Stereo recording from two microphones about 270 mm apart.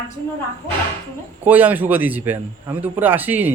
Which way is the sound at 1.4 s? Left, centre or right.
Centre.